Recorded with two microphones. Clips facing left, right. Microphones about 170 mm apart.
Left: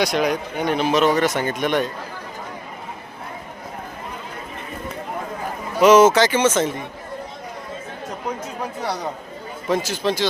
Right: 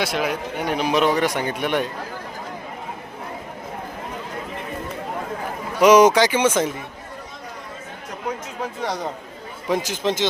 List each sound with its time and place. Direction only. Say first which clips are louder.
0.0 s a man's voice: left 3 dB; 5° right (ahead or behind)
5.8 s a man's voice: left 1 dB; 15° right (ahead or behind)
9.6 s speech: left 1 dB; 15° right (ahead or behind)